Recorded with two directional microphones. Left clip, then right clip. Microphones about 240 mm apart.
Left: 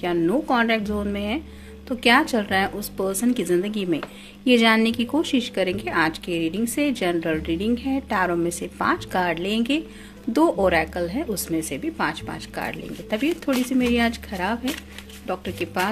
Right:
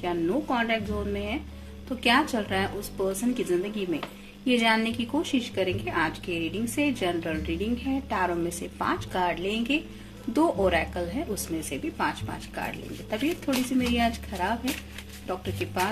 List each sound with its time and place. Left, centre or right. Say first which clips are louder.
0.0 s speech: left 5 dB; left